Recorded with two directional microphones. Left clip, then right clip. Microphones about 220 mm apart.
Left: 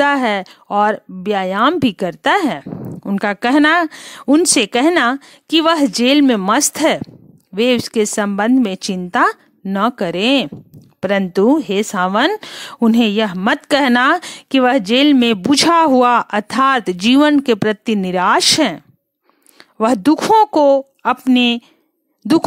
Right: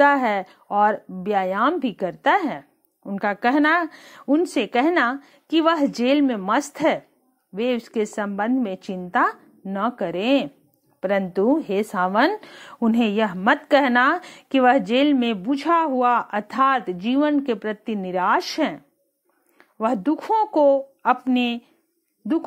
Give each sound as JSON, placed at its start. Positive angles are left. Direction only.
{"t": 0.0, "sound": "a woman's voice", "side_deg": 50}
{"t": 19.8, "sound": "a woman's voice", "side_deg": 55}